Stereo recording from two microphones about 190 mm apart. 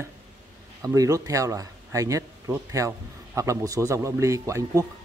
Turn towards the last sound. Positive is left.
turn(degrees=-15)  # may be behind; listen again after turning